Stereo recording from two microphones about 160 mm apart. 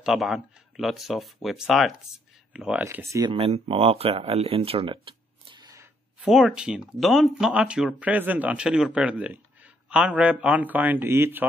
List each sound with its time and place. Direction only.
0.0 s speech: centre (ahead or behind); by 3.3 s 15° right (ahead or behind)
3.3 s speech: 35° right (ahead or behind)
6.2 s speech: 5° right (ahead or behind)